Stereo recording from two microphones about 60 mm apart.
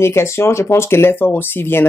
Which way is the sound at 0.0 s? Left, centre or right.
Left.